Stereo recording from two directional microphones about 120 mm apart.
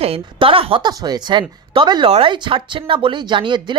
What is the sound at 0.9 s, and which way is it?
Speech, 35° right (ahead or behind).